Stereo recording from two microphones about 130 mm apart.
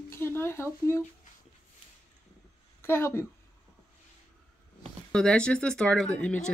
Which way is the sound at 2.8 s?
20° left (ahead or behind).